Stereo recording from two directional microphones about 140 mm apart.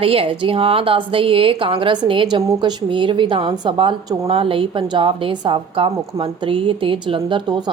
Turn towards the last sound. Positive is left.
turn(degrees=-35)  # may be behind; listen again after turning